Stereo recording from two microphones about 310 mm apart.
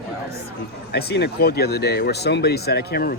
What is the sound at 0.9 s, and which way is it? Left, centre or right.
Speech, left.